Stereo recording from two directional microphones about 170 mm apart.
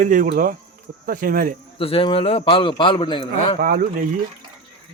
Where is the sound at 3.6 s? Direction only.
60° right (ahead or behind).